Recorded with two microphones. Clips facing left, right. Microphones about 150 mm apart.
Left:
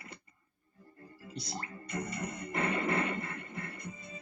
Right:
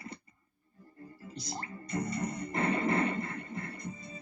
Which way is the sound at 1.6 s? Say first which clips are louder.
Right 6 dB; 30° right (ahead or behind).